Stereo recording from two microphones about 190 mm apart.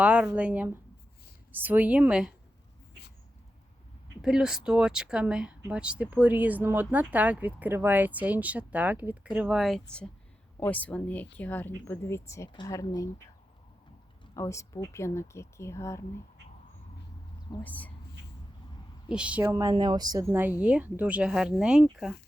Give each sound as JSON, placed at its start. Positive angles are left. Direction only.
{"t": 0.0, "sound": "a woman's voice", "side_deg": -5}
{"t": 4.2, "sound": "a woman's voice", "side_deg": -5}
{"t": 14.3, "sound": "speech", "side_deg": 15}
{"t": 17.6, "sound": "speech", "side_deg": 10}
{"t": 19.0, "sound": "speech", "side_deg": -5}
{"t": 20.6, "sound": "speech", "side_deg": -5}